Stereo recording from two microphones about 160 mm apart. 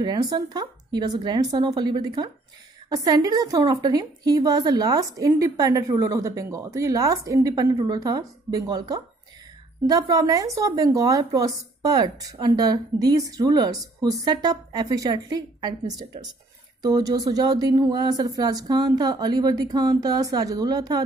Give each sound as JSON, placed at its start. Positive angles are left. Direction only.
{"t": 0.0, "sound": "speech", "side_deg": -25}